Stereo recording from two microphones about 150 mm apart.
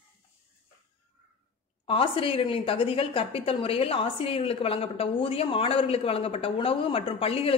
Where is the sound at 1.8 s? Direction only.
35° left (ahead or behind).